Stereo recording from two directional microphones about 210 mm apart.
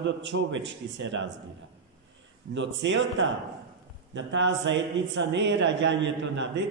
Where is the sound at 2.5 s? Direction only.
60° right (ahead or behind).